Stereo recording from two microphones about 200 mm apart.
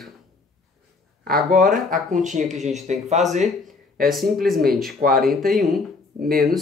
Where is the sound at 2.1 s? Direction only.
40° right (ahead or behind).